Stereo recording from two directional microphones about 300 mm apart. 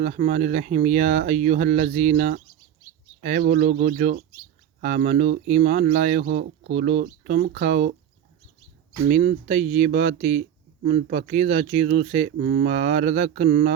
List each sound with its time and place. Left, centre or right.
0.0 s speech: right
9.0 s speech: right